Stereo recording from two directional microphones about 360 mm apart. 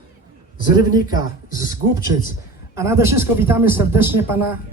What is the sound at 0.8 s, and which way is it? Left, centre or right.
Speech, centre.